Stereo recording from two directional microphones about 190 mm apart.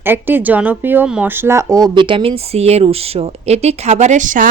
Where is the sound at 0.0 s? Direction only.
10° right (ahead or behind).